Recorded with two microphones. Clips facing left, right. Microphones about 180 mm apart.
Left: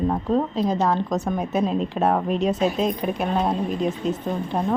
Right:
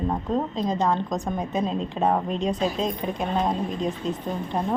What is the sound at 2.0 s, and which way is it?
Speech, 5° left (ahead or behind).